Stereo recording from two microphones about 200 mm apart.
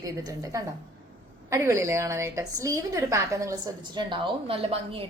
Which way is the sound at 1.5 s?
15° right (ahead or behind).